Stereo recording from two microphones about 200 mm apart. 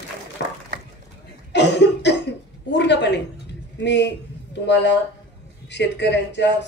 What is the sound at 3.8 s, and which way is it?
A man's voice, 60° left (ahead or behind).